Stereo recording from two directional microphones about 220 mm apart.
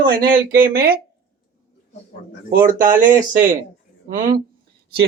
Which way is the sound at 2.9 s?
35° right (ahead or behind).